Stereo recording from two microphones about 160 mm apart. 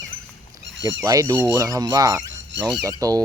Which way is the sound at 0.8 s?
20° right (ahead or behind).